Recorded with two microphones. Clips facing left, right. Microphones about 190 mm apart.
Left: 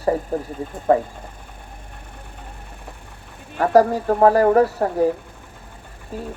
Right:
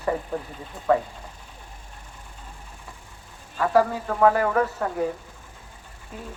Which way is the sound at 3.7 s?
40° left (ahead or behind).